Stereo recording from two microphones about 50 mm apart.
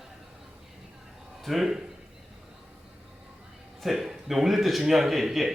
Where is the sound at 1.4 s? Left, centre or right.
Centre.